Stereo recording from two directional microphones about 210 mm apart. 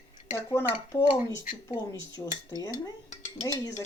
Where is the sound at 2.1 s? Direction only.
15° left (ahead or behind).